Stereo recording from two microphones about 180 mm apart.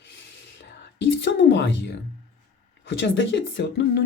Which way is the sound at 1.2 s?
85° left.